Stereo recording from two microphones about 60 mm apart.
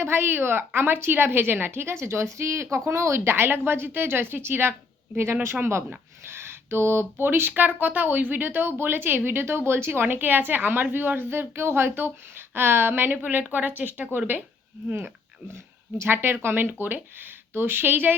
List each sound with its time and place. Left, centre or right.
0.0 s speech: right
14.9 s speech: right